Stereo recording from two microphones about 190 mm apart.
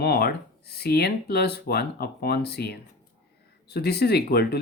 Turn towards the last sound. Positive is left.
turn(degrees=55)  # may be behind; listen again after turning